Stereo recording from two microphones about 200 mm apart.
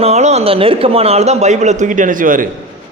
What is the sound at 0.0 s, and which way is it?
A man's voice, 35° right (ahead or behind).